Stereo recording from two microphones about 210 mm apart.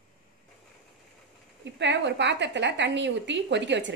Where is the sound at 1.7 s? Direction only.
55° right (ahead or behind).